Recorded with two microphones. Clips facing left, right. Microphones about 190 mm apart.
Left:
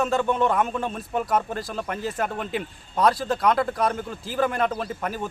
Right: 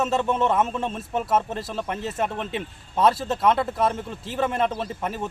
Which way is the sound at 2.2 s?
Centre (ahead or behind).